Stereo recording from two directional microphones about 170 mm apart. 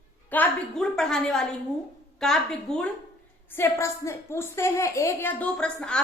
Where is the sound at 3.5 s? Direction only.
15° left (ahead or behind).